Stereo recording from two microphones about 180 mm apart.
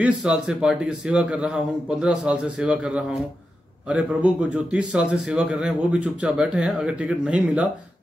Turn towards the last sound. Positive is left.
turn(degrees=-5)  # may be behind; listen again after turning